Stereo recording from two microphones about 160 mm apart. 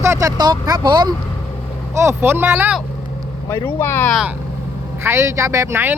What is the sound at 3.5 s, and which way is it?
Speech, 15° left (ahead or behind).